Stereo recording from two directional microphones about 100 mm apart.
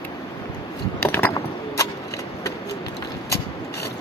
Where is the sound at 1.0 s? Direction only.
20° left (ahead or behind).